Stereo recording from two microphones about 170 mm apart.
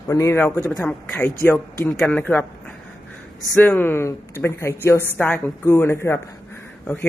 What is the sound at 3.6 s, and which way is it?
Speech, 10° left (ahead or behind).